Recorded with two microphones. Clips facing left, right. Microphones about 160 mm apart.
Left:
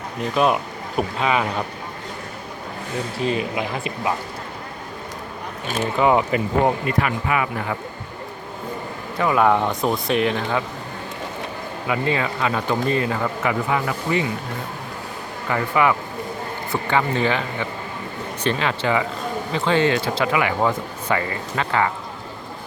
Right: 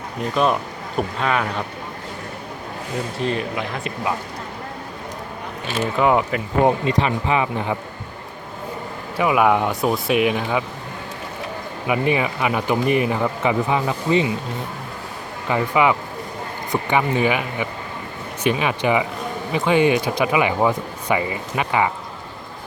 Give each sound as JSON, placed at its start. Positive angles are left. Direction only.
{"t": 0.2, "sound": "speech", "side_deg": 5}
{"t": 3.2, "sound": "speech", "side_deg": 5}
{"t": 5.7, "sound": "speech", "side_deg": -5}
{"t": 6.7, "sound": "speech", "side_deg": -25}
{"t": 9.1, "sound": "speech", "side_deg": -10}
{"t": 11.9, "sound": "speech", "side_deg": -15}
{"t": 15.4, "sound": "speech", "side_deg": -15}